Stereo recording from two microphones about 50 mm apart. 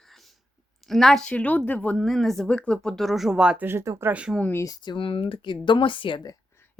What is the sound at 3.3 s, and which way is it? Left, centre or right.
Speech, centre.